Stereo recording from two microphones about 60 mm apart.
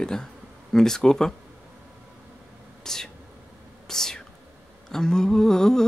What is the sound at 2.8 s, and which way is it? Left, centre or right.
Whispering, centre.